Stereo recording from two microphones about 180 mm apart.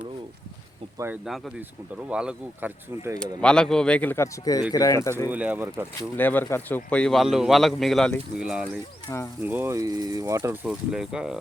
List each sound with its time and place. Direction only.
0.9 s speech: 10° right (ahead or behind)
1.2 s a man's voice: centre (ahead or behind)
3.2 s a man's voice: 5° left (ahead or behind)
5.3 s speech: 10° right (ahead or behind)
6.1 s a man's voice: 10° left (ahead or behind); by 8.6 s 5° right (ahead or behind)
9.1 s speech: 20° left (ahead or behind)
9.4 s speech: 10° right (ahead or behind)
10.7 s a man's voice: 5° right (ahead or behind)